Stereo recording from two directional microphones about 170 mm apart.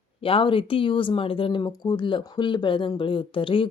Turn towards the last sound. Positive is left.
turn(degrees=30)  # may be behind; listen again after turning